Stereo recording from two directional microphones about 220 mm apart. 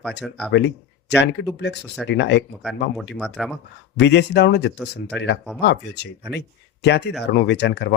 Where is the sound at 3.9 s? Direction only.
50° left (ahead or behind).